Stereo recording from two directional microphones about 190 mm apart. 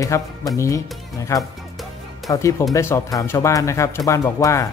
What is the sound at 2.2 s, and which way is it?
Speech, centre (ahead or behind).